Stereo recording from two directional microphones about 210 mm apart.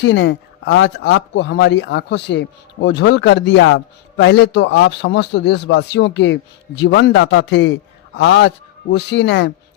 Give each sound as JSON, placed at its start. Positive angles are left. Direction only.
{"t": 0.0, "sound": "speech", "side_deg": 60}